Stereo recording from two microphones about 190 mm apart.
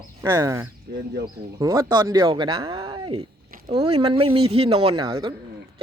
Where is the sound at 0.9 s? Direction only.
60° right (ahead or behind).